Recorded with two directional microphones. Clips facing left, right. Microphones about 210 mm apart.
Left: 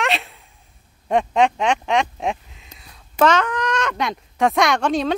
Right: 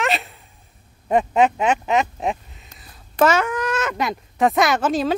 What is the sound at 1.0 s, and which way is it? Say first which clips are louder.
Speech: right 1 dB; 5° right (ahead or behind).